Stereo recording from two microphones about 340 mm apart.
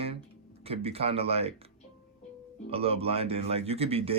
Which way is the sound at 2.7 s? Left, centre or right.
Centre.